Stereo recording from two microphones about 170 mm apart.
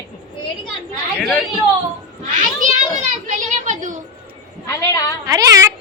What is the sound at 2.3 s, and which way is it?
Speech, 50° right (ahead or behind).